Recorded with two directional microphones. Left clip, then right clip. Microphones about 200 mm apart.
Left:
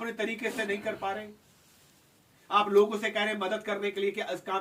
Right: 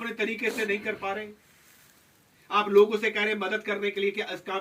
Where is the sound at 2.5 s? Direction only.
15° left (ahead or behind).